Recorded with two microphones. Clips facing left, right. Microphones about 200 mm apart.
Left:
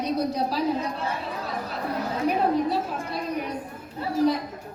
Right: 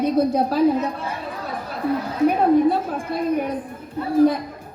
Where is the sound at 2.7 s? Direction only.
55° right (ahead or behind).